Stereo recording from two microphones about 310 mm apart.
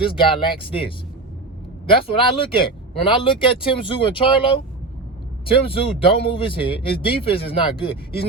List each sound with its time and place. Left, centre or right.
0.0 s speech: centre